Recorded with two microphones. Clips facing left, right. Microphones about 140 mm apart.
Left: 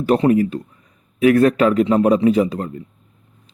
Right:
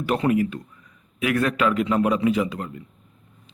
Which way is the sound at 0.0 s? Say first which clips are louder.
Left 6 dB; 35° left (ahead or behind).